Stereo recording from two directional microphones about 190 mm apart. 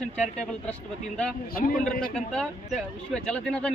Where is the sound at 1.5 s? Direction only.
50° left (ahead or behind).